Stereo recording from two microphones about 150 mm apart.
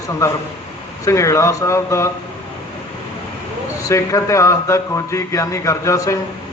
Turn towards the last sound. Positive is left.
turn(degrees=20)  # may be behind; listen again after turning